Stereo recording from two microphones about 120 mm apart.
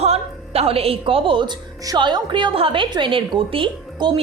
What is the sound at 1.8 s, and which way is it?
A woman's voice, 35° right (ahead or behind).